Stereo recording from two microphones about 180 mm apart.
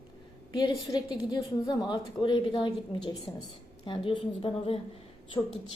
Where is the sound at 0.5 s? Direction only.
25° left (ahead or behind).